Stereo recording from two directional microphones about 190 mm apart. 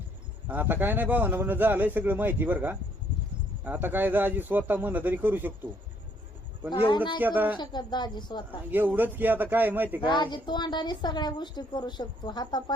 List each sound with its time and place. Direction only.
0.4 s a man's voice: 10° right (ahead or behind)
6.7 s a woman's voice: 25° left (ahead or behind)
7.2 s a man's voice: 10° right (ahead or behind)
7.6 s a woman's voice: 25° left (ahead or behind)
8.7 s a man's voice: 10° right (ahead or behind)
10.0 s a woman's voice: 25° left (ahead or behind)